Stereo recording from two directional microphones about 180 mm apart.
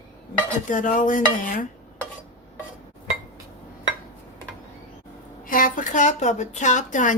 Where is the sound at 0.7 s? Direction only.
45° left (ahead or behind).